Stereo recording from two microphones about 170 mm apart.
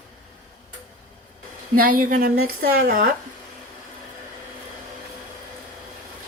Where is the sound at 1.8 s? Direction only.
55° right (ahead or behind).